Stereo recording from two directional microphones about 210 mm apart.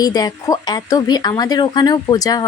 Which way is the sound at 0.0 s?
20° left (ahead or behind).